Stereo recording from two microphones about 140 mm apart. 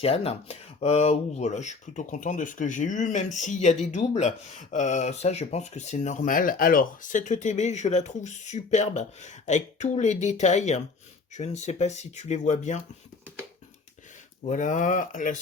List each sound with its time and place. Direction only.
0.0 s speech: 45° left (ahead or behind)
14.4 s speech: 65° left (ahead or behind)